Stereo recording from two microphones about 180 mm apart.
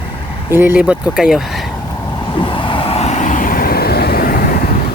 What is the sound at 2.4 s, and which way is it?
Vehicle, 25° left (ahead or behind).